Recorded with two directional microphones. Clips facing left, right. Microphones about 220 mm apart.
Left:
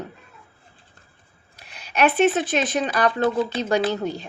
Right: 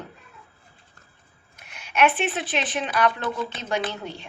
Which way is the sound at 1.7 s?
35° left (ahead or behind).